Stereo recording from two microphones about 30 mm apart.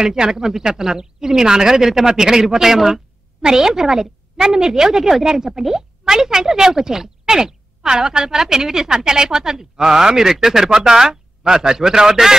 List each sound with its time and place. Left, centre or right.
0.0 s a woman's voice: right